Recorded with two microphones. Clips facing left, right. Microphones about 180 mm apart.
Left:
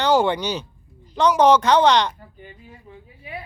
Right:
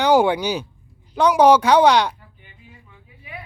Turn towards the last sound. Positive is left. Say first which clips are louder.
# left 4 dB
turn(degrees=35)  # may be behind; listen again after turning